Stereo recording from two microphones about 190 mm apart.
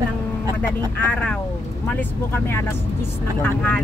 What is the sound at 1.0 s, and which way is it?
Speech, 5° left (ahead or behind).